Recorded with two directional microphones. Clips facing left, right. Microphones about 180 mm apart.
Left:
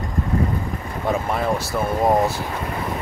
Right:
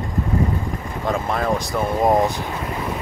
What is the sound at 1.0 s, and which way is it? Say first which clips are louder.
Speech: even; 10° left (ahead or behind).